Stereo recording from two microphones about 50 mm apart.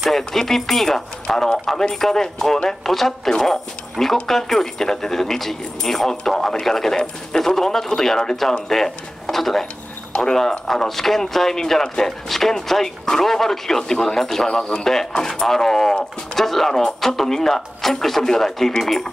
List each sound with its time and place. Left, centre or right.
0.2 s speech: centre